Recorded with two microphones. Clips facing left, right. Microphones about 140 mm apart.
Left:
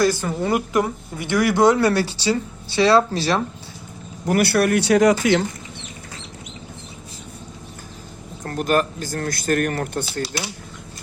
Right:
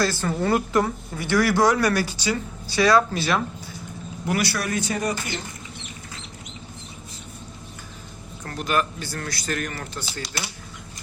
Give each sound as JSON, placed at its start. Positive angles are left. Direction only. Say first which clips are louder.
{"t": 0.0, "sound": "speech", "louder": "left 3 dB", "side_deg": 15}
{"t": 4.3, "sound": "speech", "louder": "left 8 dB", "side_deg": 55}
{"t": 8.4, "sound": "speech", "louder": "left 5 dB", "side_deg": 45}